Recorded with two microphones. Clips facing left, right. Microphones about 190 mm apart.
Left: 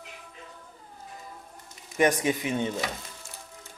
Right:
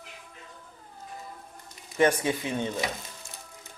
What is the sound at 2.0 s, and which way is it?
Speech, 15° left (ahead or behind).